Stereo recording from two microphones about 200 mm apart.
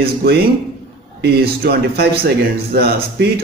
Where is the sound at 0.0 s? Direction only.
50° right (ahead or behind).